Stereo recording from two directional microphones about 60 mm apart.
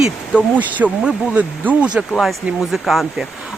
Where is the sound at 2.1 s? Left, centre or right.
Centre.